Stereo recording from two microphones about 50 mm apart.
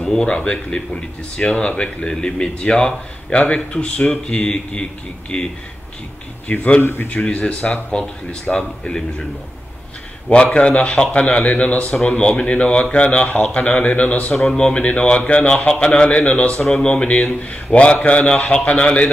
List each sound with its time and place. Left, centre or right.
0.1 s a man's voice: centre
6.4 s a man's voice: left
6.8 s a man's voice: left
7.1 s a man's voice: left
10.4 s a man's voice: left
14.3 s speech: centre
14.6 s a man's voice: left